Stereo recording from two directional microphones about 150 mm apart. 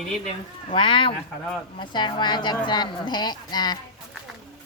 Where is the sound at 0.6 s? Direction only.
35° left (ahead or behind).